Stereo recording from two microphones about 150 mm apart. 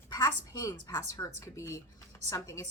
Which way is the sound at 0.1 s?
25° left (ahead or behind).